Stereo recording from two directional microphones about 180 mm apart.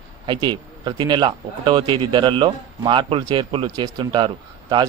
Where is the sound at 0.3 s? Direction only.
25° right (ahead or behind).